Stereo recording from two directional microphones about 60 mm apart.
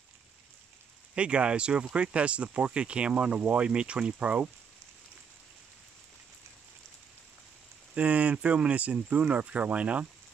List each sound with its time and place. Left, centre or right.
1.1 s speech: centre
7.9 s speech: right